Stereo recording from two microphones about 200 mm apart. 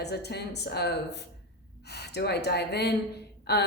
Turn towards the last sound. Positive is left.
turn(degrees=55)  # may be behind; listen again after turning